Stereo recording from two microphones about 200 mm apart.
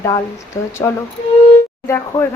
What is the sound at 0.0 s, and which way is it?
A woman's voice, 15° left (ahead or behind).